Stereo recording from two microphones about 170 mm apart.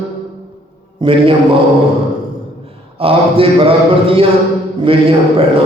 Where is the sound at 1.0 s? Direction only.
30° right (ahead or behind).